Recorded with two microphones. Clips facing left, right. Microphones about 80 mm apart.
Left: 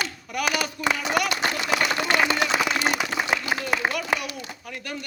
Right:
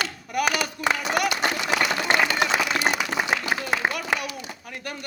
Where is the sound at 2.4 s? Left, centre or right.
Centre.